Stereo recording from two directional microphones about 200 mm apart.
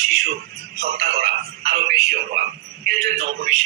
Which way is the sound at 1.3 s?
30° right (ahead or behind).